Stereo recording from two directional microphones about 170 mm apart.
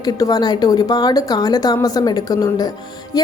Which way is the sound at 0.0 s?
20° left (ahead or behind).